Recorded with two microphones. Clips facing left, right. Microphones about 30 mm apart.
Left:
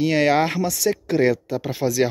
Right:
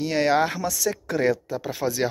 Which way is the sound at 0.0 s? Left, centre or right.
Left.